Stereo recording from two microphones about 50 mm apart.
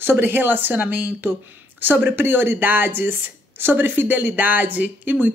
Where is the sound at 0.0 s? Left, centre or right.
Right.